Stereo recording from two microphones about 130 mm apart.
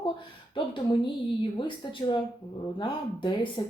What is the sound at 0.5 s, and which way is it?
Speech, 40° left (ahead or behind).